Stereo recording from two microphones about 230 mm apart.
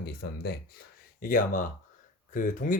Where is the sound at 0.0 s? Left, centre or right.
Left.